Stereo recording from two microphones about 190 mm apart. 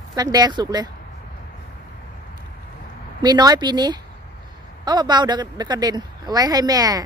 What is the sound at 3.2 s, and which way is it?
A woman's voice, 20° right (ahead or behind).